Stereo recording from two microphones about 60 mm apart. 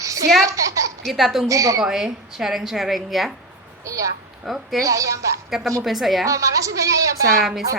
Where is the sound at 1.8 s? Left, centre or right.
Centre.